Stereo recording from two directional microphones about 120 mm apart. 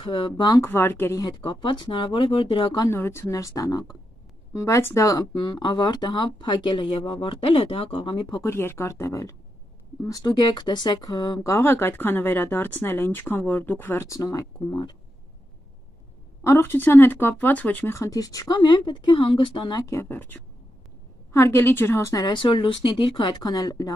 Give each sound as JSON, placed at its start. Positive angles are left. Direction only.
{"t": 0.0, "sound": "speech", "side_deg": 45}
{"t": 0.6, "sound": "speech", "side_deg": 20}
{"t": 1.1, "sound": "speech", "side_deg": 35}
{"t": 2.9, "sound": "speech", "side_deg": 20}
{"t": 5.3, "sound": "speech", "side_deg": 40}
{"t": 8.4, "sound": "speech", "side_deg": 20}
{"t": 11.5, "sound": "speech", "side_deg": 20}
{"t": 16.4, "sound": "speech", "side_deg": 20}
{"t": 19.9, "sound": "speech", "side_deg": 20}